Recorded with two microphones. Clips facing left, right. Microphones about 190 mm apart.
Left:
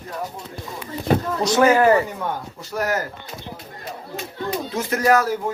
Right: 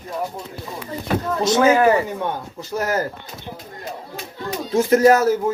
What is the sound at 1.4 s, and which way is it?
Speech, 20° right (ahead or behind).